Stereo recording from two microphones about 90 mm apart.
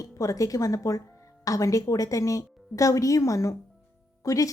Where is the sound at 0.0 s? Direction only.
40° left (ahead or behind).